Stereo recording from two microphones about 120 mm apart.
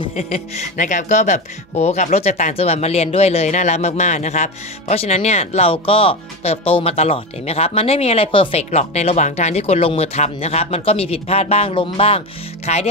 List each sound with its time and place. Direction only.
0.1 s speech: 70° left (ahead or behind); by 12.2 s 50° left (ahead or behind)
12.6 s speech: 65° left (ahead or behind)